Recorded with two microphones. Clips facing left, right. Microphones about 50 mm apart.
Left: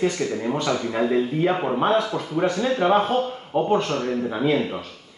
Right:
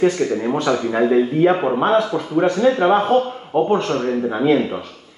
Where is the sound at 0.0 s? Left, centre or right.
Right.